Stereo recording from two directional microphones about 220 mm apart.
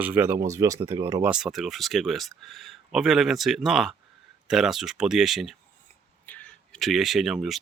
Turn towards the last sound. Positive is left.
turn(degrees=0)  # may be behind; listen again after turning